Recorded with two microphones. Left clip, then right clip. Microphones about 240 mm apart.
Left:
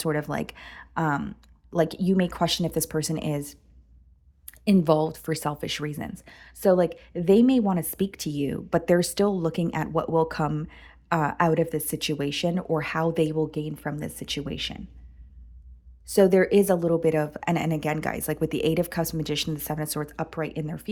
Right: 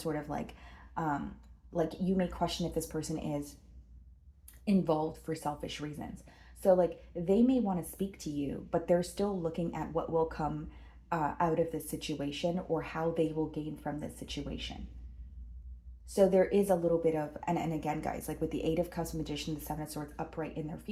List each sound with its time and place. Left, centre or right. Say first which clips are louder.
0.0 s speech: left 9 dB; left
4.6 s speech: left 9 dB; left
16.1 s speech: left 7 dB; left